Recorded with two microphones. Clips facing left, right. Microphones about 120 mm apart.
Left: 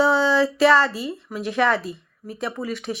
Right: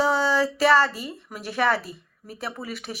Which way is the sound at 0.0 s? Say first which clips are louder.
Left 3 dB; 40° right (ahead or behind).